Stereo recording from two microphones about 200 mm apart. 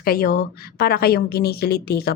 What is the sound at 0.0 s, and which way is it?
A woman's voice, 50° left (ahead or behind).